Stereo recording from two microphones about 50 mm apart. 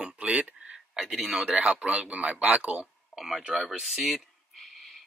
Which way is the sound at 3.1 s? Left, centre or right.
Centre.